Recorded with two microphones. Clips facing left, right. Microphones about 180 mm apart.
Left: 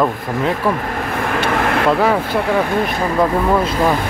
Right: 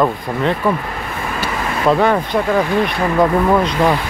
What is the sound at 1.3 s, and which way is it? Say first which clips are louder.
Vehicle: left 5 dB; 65° left (ahead or behind).